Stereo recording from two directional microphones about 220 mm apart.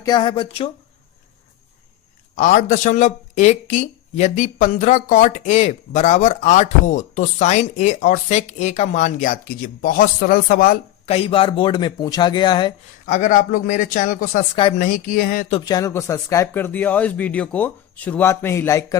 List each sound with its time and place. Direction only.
0.0 s speech: 20° left (ahead or behind)
2.3 s speech: 35° left (ahead or behind)
11.1 s speech: 25° left (ahead or behind)
13.1 s speech: 35° left (ahead or behind)
15.5 s speech: 15° left (ahead or behind)